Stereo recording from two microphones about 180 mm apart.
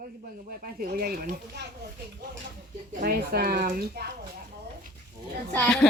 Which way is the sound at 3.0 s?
60° right (ahead or behind).